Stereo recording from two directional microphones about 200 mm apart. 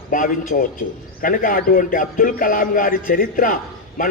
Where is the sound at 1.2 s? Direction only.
45° left (ahead or behind).